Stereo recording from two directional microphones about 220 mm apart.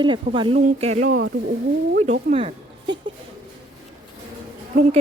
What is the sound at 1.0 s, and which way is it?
Speech, 60° right (ahead or behind).